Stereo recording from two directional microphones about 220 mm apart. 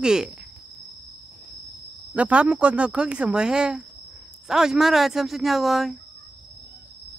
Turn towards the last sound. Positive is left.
turn(degrees=0)  # may be behind; listen again after turning